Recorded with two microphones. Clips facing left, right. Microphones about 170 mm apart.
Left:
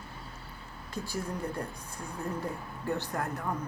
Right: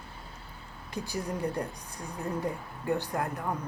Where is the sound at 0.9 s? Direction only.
15° right (ahead or behind).